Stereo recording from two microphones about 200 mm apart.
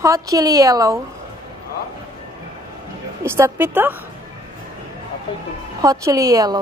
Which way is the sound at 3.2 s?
15° right (ahead or behind).